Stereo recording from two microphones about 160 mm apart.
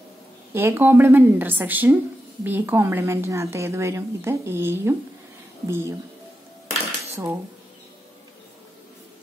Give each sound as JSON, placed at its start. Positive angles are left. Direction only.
{"t": 0.5, "sound": "a woman's voice", "side_deg": -15}